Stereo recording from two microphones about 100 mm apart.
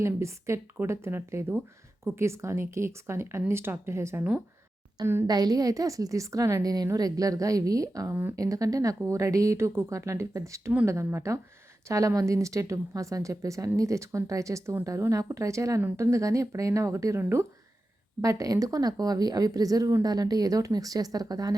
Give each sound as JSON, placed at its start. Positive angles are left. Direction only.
{"t": 0.0, "sound": "speech", "side_deg": -30}
{"t": 4.2, "sound": "speech", "side_deg": -15}
{"t": 5.2, "sound": "a woman's voice", "side_deg": -40}